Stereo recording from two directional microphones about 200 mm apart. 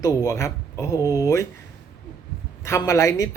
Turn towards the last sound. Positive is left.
turn(degrees=15)  # may be behind; listen again after turning